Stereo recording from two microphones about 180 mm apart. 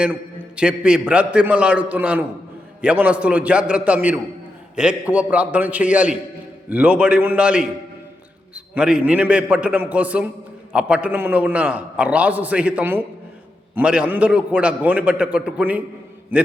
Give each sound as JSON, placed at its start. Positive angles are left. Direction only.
{"t": 0.0, "sound": "a man's voice", "side_deg": -5}